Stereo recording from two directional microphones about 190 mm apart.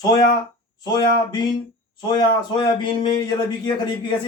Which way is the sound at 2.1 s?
20° left (ahead or behind).